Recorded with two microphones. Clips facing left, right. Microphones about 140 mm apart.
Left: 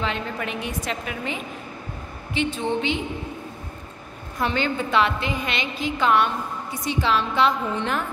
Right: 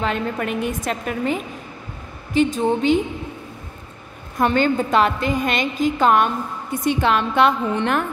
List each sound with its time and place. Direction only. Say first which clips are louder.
0.0 s a woman's voice: right 5 dB; 45° right (ahead or behind)
4.4 s a woman's voice: right 6 dB; 50° right (ahead or behind)